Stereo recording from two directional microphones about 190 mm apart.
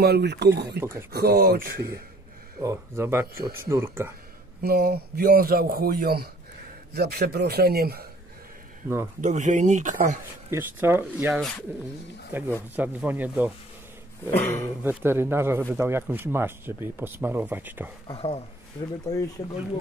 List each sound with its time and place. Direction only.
0.0 s a man's voice: 60° right (ahead or behind)
0.7 s speech: 15° right (ahead or behind)
1.1 s a man's voice: 55° right (ahead or behind)
2.6 s speech: 15° right (ahead or behind)
4.6 s a man's voice: 55° right (ahead or behind)
8.8 s speech: 15° right (ahead or behind)
9.2 s speech: 40° right (ahead or behind)
10.5 s speech: 10° right (ahead or behind)
14.3 s speech: 10° left (ahead or behind)
14.8 s speech: 10° right (ahead or behind)
18.0 s speech: 30° left (ahead or behind)